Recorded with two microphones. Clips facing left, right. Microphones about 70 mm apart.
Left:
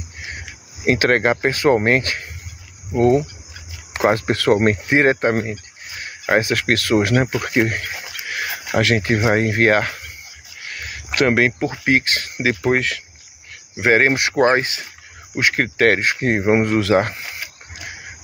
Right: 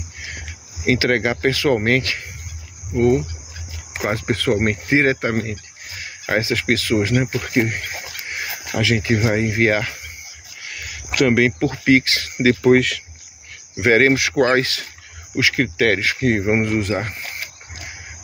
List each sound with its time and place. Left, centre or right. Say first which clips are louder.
0.8 s speech: left 2 dB; left
4.0 s speech: left 4 dB; left
4.6 s speech: left 2 dB; left
5.4 s a sound: left 2 dB; left
6.4 s speech: left 1 dB; left
8.7 s speech: left 2 dB; left
10.6 s a sound: left 2 dB; left
11.8 s speech: right 3 dB; left
15.3 s speech: even; left
16.5 s speech: left 2 dB; left
16.8 s speech: left 7 dB; left